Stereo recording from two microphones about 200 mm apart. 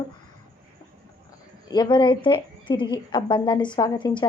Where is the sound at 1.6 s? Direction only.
20° left (ahead or behind).